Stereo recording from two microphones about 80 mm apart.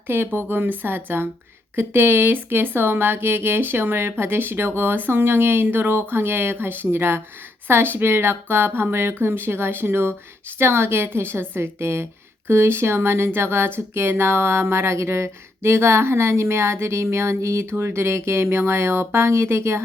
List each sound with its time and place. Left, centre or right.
0.1 s speech: right